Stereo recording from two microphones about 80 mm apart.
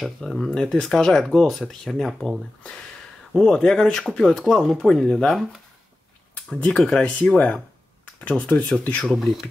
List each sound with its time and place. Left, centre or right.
0.0 s speech: centre
3.3 s speech: centre
9.0 s speech: centre